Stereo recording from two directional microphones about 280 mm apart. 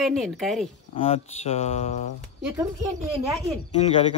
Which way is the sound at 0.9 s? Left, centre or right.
Left.